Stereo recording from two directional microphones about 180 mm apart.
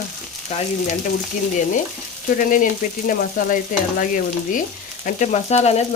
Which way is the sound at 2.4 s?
45° left (ahead or behind).